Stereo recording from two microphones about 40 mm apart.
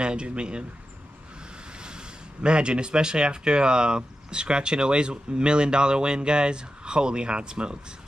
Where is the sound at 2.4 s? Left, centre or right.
Right.